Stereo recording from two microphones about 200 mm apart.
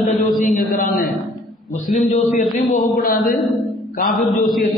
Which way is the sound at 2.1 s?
35° left (ahead or behind).